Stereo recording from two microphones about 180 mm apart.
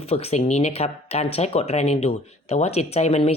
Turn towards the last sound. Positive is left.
turn(degrees=35)  # may be behind; listen again after turning